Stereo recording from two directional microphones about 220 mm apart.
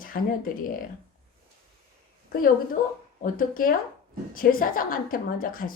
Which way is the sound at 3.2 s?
40° left (ahead or behind).